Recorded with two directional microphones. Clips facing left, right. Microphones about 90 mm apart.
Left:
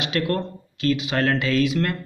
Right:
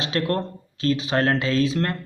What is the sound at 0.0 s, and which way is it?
Speech, 35° right (ahead or behind).